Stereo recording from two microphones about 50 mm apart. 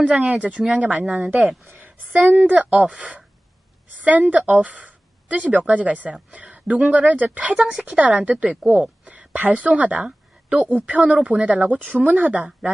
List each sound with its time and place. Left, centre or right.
0.0 s a woman's voice: right
3.8 s a woman's voice: right